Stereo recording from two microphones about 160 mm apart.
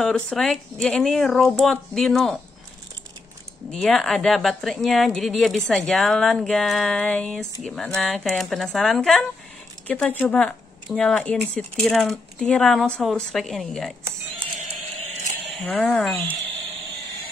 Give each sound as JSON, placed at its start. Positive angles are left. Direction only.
{"t": 0.0, "sound": "a woman's voice", "side_deg": 5}
{"t": 3.7, "sound": "a woman's voice", "side_deg": 0}
{"t": 14.0, "sound": "a sound", "side_deg": -35}
{"t": 15.5, "sound": "a woman's voice", "side_deg": 5}